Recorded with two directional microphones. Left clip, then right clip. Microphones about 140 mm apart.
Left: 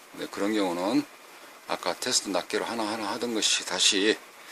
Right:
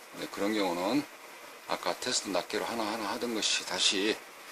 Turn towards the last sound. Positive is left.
turn(degrees=50)  # may be behind; listen again after turning